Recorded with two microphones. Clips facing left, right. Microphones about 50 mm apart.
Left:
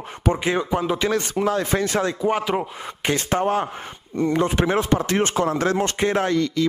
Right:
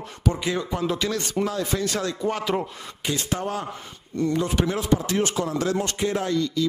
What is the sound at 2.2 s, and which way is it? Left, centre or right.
Speech, centre.